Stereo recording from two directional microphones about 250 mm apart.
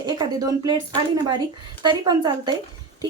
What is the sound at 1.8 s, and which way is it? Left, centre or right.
Speech, centre.